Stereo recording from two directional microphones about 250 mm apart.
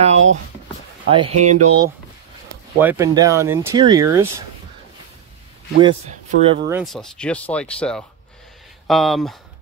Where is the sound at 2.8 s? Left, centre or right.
Centre.